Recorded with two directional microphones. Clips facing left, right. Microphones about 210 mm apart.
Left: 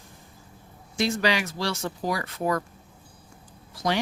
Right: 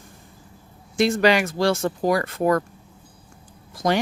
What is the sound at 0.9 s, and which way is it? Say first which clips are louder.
Speech: right 7 dB; 55° right (ahead or behind).